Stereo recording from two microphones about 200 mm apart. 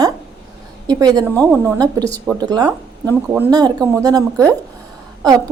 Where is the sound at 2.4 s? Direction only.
20° right (ahead or behind).